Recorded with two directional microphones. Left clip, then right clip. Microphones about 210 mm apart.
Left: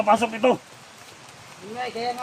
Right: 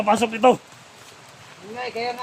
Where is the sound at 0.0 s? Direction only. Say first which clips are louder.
Right 2 dB; 50° right (ahead or behind).